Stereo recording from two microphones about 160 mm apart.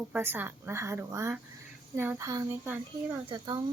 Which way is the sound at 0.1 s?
10° right (ahead or behind).